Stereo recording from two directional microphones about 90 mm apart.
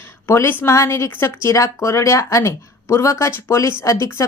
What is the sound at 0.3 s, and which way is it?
Speech, 30° left (ahead or behind).